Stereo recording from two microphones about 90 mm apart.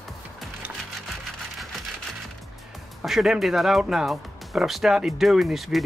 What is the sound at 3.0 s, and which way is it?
Speech, 5° right (ahead or behind).